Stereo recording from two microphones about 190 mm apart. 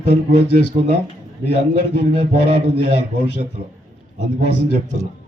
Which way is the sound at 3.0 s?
65° left (ahead or behind).